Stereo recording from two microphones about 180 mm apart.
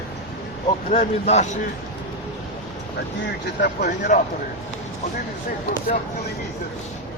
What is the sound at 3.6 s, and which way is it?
Speech, 45° left (ahead or behind).